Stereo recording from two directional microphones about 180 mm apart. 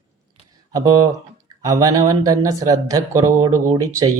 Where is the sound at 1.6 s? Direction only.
20° right (ahead or behind).